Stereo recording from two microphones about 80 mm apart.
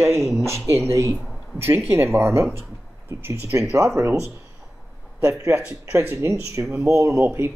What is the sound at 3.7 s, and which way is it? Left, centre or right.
Speech, right.